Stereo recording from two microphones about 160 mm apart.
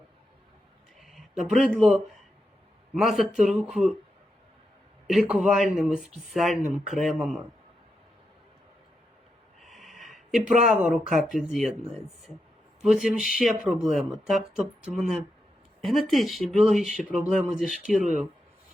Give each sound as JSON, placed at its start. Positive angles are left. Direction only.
{"t": 0.9, "sound": "a sound", "side_deg": 0}
{"t": 1.5, "sound": "speech", "side_deg": -5}
{"t": 5.0, "sound": "speech", "side_deg": 0}
{"t": 9.6, "sound": "a sound", "side_deg": 0}
{"t": 10.7, "sound": "speech", "side_deg": -5}
{"t": 12.8, "sound": "speech", "side_deg": 0}